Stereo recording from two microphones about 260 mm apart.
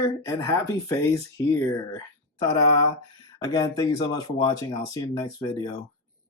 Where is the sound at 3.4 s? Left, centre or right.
Centre.